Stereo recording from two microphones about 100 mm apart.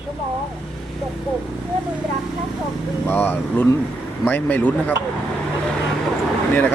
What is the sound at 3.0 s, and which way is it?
Speech, 20° left (ahead or behind).